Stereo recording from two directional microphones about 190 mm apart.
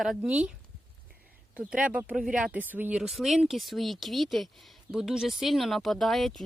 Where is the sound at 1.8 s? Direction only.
5° right (ahead or behind).